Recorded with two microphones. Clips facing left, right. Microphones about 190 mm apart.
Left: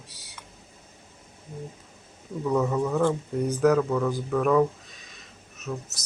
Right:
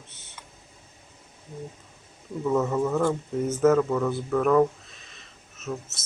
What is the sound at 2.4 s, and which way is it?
Speech, centre (ahead or behind).